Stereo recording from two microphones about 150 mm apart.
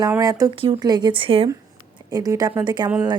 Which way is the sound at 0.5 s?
35° right (ahead or behind).